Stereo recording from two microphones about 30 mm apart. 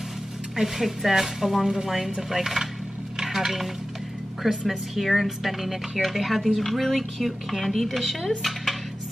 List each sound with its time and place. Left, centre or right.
0.7 s speech: centre
1.7 s speech: centre
3.2 s a sound: centre
4.4 s speech: centre